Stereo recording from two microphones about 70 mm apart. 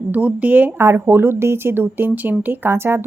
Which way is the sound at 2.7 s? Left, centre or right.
Right.